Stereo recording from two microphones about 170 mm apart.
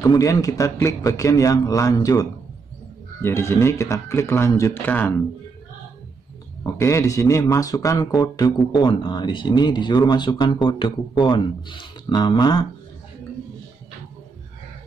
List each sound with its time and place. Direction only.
0.0 s speech: 20° left (ahead or behind)
6.6 s speech: 15° left (ahead or behind)